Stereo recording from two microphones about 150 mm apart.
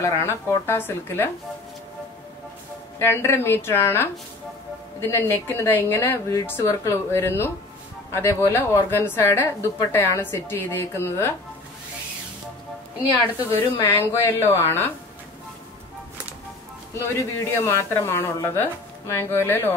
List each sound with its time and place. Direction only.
0.0 s a woman's voice: 20° left (ahead or behind)
3.0 s a woman's voice: 15° left (ahead or behind)
13.8 s a woman's voice: 15° left (ahead or behind)
17.0 s a woman's voice: 15° left (ahead or behind)